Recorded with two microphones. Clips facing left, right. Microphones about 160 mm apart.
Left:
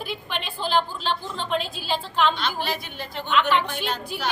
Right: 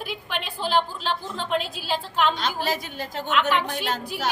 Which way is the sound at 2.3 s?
40° right (ahead or behind).